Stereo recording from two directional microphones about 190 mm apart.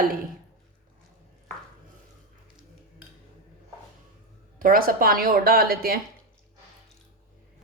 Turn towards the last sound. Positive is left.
turn(degrees=-50)  # may be behind; listen again after turning